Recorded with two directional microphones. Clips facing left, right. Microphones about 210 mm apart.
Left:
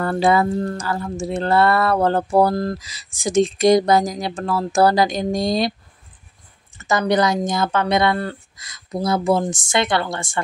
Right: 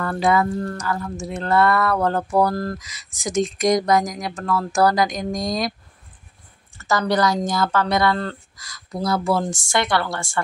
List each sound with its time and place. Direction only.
0.0 s speech: 30° left (ahead or behind)
2.8 s speech: 30° left (ahead or behind)
6.8 s a woman's voice: 20° left (ahead or behind)